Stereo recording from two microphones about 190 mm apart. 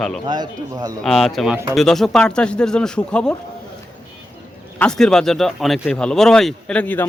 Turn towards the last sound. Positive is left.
turn(degrees=10)  # may be behind; listen again after turning